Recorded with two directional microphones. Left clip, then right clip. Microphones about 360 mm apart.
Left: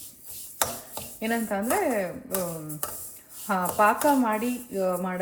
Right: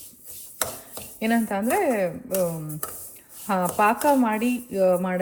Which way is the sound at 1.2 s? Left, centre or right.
Right.